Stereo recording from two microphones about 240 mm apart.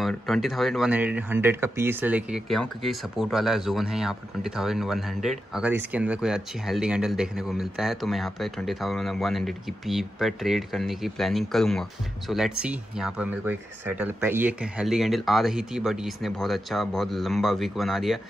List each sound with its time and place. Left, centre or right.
0.0 s speech: centre